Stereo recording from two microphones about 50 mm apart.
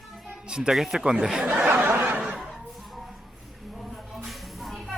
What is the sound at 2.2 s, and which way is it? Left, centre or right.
Snicker, centre.